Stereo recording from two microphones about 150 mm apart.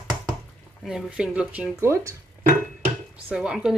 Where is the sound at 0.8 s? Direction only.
5° right (ahead or behind); by 2.1 s 20° right (ahead or behind).